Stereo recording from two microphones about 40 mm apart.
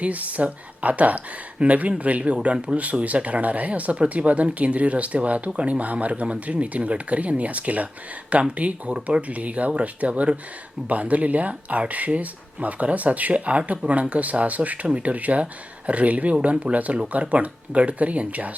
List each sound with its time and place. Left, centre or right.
0.0 s speech: right